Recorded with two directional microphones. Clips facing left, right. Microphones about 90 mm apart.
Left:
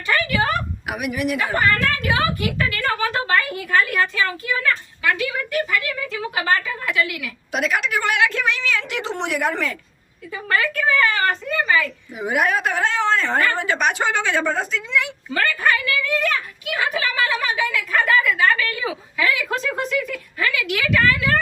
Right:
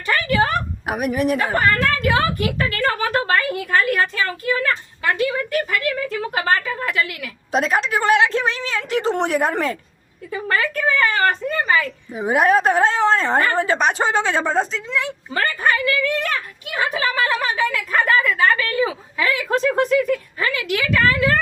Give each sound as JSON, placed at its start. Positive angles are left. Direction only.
{"t": 0.1, "sound": "a woman's voice", "side_deg": -35}